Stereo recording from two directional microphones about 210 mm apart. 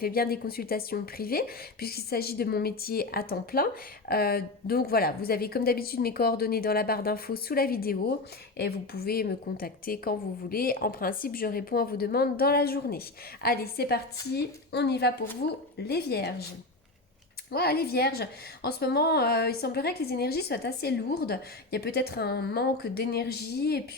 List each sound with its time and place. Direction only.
0.0 s a woman's voice: 45° left (ahead or behind)
17.5 s a woman's voice: 50° left (ahead or behind)